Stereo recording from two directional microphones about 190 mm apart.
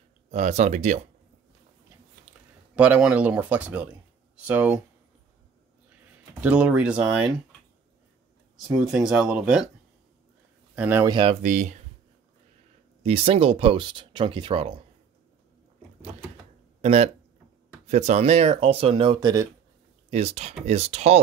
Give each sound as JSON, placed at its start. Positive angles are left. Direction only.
{"t": 0.3, "sound": "speech", "side_deg": -35}
{"t": 2.7, "sound": "speech", "side_deg": -5}
{"t": 6.4, "sound": "speech", "side_deg": -5}
{"t": 8.5, "sound": "speech", "side_deg": -5}
{"t": 10.8, "sound": "speech", "side_deg": -10}
{"t": 11.1, "sound": "speech", "side_deg": -25}
{"t": 11.4, "sound": "speech", "side_deg": -40}
{"t": 13.0, "sound": "speech", "side_deg": -30}
{"t": 16.8, "sound": "speech", "side_deg": -35}
{"t": 20.1, "sound": "speech", "side_deg": -30}